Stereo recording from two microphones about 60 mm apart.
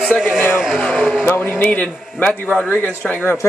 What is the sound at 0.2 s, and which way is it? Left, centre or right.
Speech, centre.